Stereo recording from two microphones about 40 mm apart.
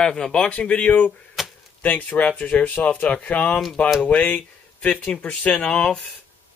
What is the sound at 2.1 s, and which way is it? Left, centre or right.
Speech, left.